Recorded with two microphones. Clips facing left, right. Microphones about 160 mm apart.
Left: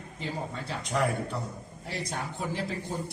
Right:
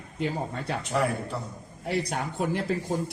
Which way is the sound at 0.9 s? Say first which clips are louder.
Even; 5° right (ahead or behind).